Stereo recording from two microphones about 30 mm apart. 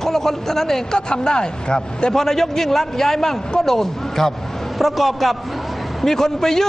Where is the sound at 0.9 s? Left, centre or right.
Left.